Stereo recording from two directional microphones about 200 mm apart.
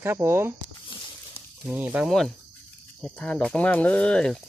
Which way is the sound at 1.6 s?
10° right (ahead or behind).